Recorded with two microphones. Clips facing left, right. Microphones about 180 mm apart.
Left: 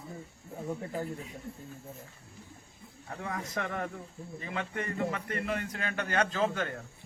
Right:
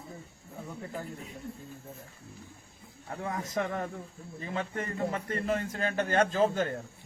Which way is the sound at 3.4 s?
40° right (ahead or behind).